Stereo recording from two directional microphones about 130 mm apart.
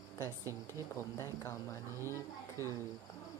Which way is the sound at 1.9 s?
20° right (ahead or behind).